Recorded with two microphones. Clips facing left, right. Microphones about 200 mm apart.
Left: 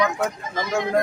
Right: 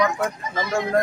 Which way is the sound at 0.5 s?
Centre (ahead or behind).